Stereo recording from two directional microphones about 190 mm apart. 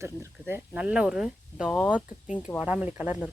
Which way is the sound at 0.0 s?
15° right (ahead or behind).